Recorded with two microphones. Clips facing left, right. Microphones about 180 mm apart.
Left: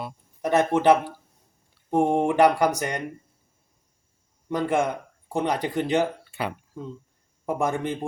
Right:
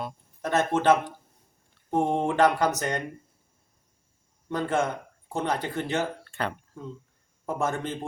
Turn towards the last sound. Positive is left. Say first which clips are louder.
# left 3 dB
turn(degrees=15)  # may be behind; listen again after turning